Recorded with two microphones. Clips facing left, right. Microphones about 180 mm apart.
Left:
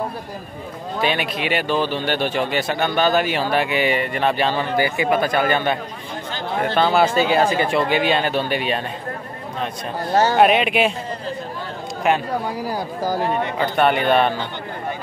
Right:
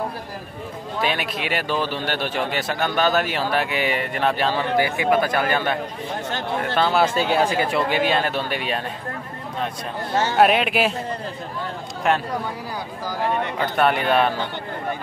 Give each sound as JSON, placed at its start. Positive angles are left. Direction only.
{"t": 1.0, "sound": "speech", "side_deg": 0}
{"t": 6.9, "sound": "speech", "side_deg": 5}
{"t": 10.3, "sound": "speech", "side_deg": 0}
{"t": 12.1, "sound": "speech", "side_deg": 5}
{"t": 12.7, "sound": "speech", "side_deg": 45}
{"t": 13.6, "sound": "speech", "side_deg": 0}